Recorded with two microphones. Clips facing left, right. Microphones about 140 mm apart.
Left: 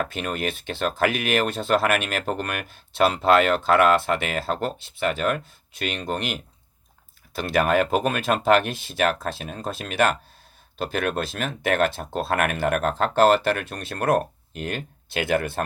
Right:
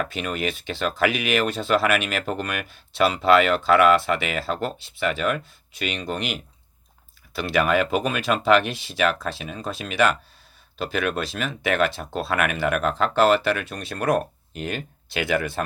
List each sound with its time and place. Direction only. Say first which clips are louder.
0.1 s speech: even; 50° left (ahead or behind)